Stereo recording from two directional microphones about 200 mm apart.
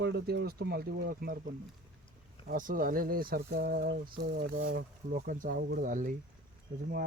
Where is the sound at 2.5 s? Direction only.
45° right (ahead or behind).